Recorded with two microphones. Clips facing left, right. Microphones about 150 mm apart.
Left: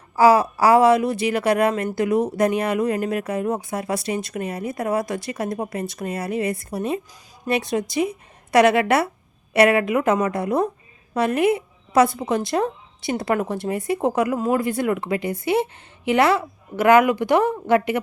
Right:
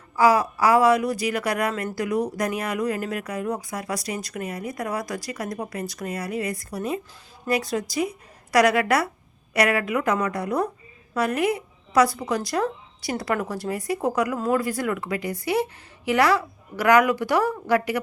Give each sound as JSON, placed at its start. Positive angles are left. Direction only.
{"t": 0.2, "sound": "speech", "side_deg": 30}